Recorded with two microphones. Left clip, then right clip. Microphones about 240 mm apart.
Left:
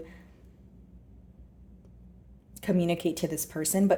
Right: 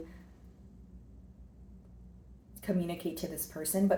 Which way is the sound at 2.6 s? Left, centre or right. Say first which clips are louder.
Left 7 dB; left.